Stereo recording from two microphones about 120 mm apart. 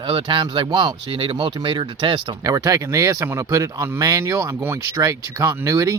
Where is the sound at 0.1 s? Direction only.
40° right (ahead or behind).